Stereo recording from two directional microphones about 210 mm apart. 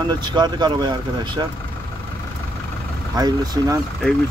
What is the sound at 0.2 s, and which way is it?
Speech, 20° right (ahead or behind).